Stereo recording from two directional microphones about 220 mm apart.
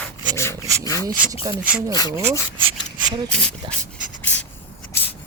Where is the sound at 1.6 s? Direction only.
5° right (ahead or behind); by 3.8 s 20° right (ahead or behind).